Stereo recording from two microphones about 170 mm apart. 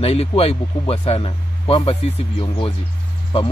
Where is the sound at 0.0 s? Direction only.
35° left (ahead or behind).